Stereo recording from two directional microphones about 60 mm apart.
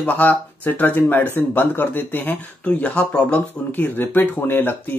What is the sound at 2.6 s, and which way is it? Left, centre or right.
Speech, left.